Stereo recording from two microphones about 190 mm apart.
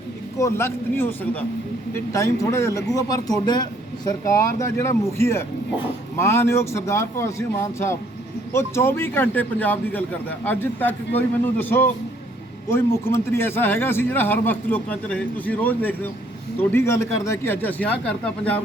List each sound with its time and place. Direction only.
0.3 s a man's voice: 15° left (ahead or behind)